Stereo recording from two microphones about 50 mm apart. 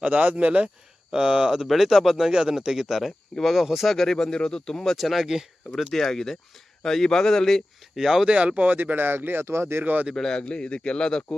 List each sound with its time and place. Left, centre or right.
0.0 s speech: right; by 1.6 s centre
1.6 s speech: centre
3.9 s a man's voice: centre
4.9 s speech: centre
5.9 s a man's voice: centre
7.9 s speech: centre
8.4 s speech: right
9.8 s speech: right
10.2 s a man's voice: centre